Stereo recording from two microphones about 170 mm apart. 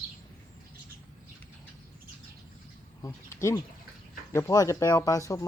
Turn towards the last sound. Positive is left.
turn(degrees=20)  # may be behind; listen again after turning